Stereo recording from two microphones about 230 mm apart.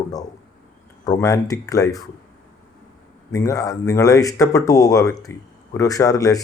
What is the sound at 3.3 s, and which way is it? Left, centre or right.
Speech, centre.